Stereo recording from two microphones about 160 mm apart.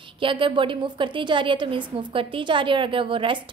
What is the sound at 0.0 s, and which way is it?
A woman's voice, 30° right (ahead or behind).